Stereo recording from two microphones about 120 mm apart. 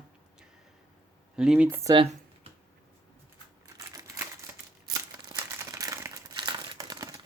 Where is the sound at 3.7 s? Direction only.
30° right (ahead or behind).